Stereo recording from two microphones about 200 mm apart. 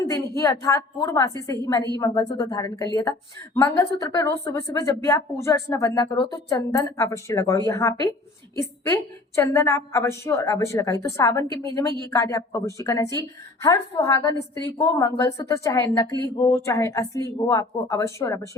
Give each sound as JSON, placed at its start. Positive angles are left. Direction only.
{"t": 0.0, "sound": "a woman's voice", "side_deg": 15}